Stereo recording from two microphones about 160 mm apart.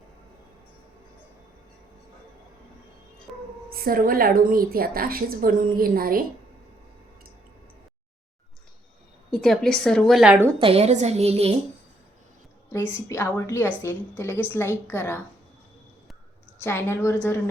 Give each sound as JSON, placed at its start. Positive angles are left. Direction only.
{"t": 3.8, "sound": "a woman's voice", "side_deg": -65}
{"t": 9.3, "sound": "a woman's voice", "side_deg": 5}
{"t": 10.6, "sound": "a woman's voice", "side_deg": -40}
{"t": 13.1, "sound": "a woman's voice", "side_deg": 15}
{"t": 16.6, "sound": "a woman's voice", "side_deg": 15}